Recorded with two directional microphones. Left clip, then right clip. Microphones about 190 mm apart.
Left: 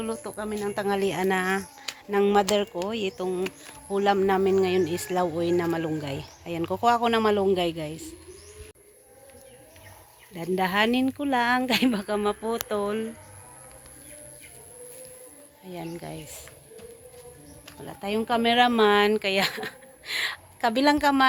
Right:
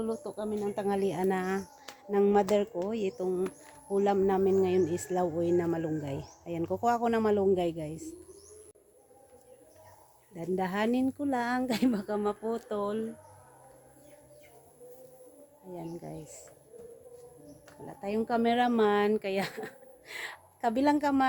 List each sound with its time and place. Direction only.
0.0 s speech: 15° left (ahead or behind)
0.8 s speech: 5° left (ahead or behind)
10.5 s speech: 15° left (ahead or behind)
15.7 s speech: 15° left (ahead or behind)
17.7 s speech: 15° left (ahead or behind)